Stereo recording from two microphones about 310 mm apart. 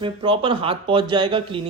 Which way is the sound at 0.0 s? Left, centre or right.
Centre.